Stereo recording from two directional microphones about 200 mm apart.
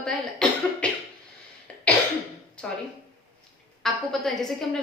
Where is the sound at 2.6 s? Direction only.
5° left (ahead or behind).